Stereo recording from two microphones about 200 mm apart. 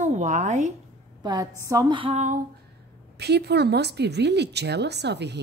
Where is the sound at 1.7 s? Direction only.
20° right (ahead or behind).